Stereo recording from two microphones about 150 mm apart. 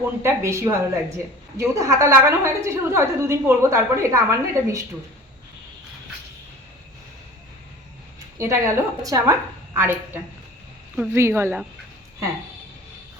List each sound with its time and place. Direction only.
0.0 s a woman's voice: 20° right (ahead or behind)
8.4 s a woman's voice: 15° right (ahead or behind)